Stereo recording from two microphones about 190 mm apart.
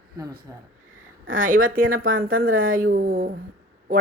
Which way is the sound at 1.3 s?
45° right (ahead or behind).